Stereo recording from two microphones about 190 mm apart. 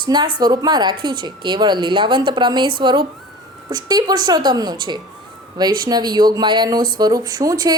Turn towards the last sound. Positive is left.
turn(degrees=-20)  # may be behind; listen again after turning